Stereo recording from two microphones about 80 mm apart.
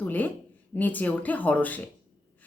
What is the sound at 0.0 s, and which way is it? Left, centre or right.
A woman's voice, left.